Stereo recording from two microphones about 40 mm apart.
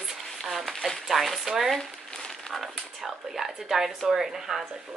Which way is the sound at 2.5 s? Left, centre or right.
Centre.